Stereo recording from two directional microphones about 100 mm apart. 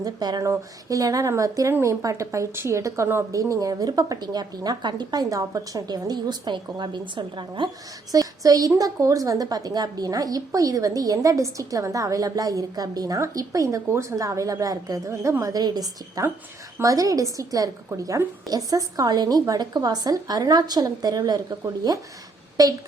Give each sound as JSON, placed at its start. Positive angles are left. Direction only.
{"t": 0.0, "sound": "a woman's voice", "side_deg": -40}
{"t": 8.1, "sound": "a woman's voice", "side_deg": -40}